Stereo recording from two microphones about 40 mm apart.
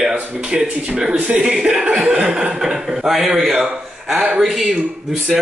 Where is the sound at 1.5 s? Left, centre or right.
Centre.